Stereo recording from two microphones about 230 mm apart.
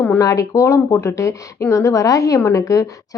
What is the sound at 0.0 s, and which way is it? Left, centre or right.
A woman's voice, centre.